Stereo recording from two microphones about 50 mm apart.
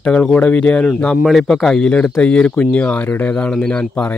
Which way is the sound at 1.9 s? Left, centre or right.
Left.